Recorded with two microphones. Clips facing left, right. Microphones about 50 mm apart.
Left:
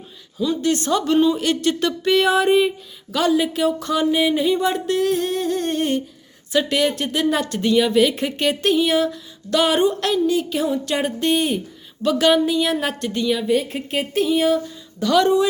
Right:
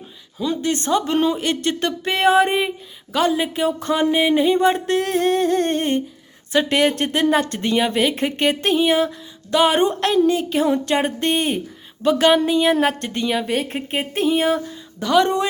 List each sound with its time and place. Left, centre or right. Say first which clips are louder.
0.3 s a woman's voice: left 2 dB; right
9.8 s speech: right 2 dB; right
13.4 s speech: left 3 dB; right
13.7 s speech: left 1 dB; right